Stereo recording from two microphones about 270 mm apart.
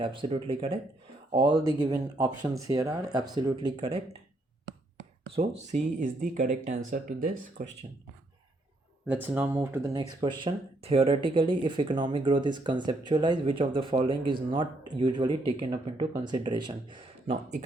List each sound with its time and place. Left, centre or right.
0.0 s speech: centre
5.4 s speech: right
9.0 s speech: centre